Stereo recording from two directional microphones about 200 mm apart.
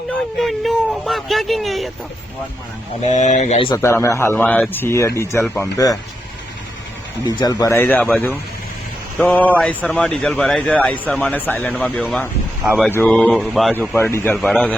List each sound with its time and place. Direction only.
0.3 s speech: centre (ahead or behind)
3.0 s speech: 35° left (ahead or behind)
3.7 s speech: 10° left (ahead or behind)
7.3 s speech: 20° left (ahead or behind); by 13.9 s centre (ahead or behind)
13.9 s speech: 10° left (ahead or behind)